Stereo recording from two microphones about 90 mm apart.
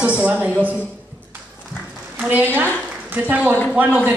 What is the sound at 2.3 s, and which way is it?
A woman's voice, 20° right (ahead or behind).